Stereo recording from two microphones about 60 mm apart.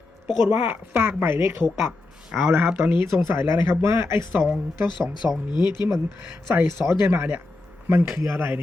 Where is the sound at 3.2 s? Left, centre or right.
Right.